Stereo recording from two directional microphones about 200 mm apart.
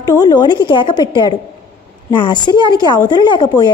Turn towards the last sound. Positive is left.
turn(degrees=20)  # may be behind; listen again after turning